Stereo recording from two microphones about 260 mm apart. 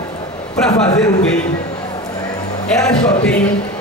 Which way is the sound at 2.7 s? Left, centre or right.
Centre.